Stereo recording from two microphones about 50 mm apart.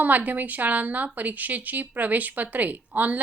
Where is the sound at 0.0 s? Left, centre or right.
Right.